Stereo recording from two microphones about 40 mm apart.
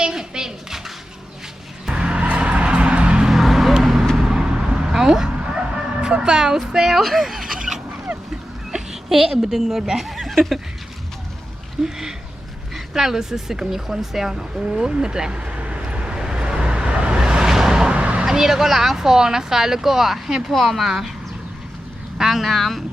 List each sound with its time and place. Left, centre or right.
0.0 s a sound: centre
1.9 s music: right
3.2 s a sound: centre
4.2 s vehicle: centre
5.7 s music: right
6.7 s speech: centre
6.9 s a sound: centre
8.7 s a woman's voice: centre
11.8 s speech: centre
12.7 s speech: centre
15.4 s vehicle: right; by 17.9 s centre
17.9 s vehicle: right
18.3 s speech: centre
22.2 s speech: centre